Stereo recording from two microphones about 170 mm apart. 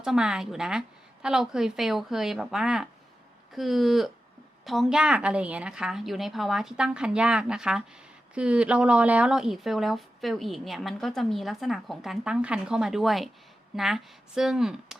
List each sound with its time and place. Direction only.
0.0 s speech: 5° right (ahead or behind)